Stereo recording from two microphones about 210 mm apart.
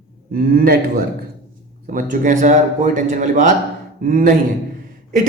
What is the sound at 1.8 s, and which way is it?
A man's voice, 40° right (ahead or behind).